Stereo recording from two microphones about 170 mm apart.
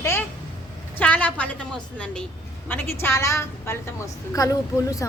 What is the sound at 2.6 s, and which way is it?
A woman's voice, 10° left (ahead or behind).